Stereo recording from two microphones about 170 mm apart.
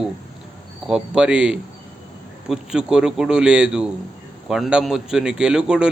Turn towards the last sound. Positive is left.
turn(degrees=-5)  # may be behind; listen again after turning